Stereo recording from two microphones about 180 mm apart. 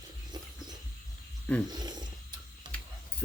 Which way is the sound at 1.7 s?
25° right (ahead or behind).